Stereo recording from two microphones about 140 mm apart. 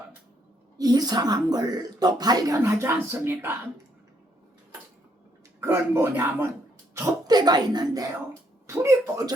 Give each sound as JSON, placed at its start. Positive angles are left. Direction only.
{"t": 0.8, "sound": "a woman's voice", "side_deg": -30}
{"t": 5.5, "sound": "a woman's voice", "side_deg": -15}